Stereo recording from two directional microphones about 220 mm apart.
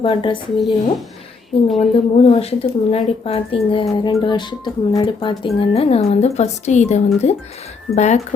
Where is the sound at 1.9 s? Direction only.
30° left (ahead or behind).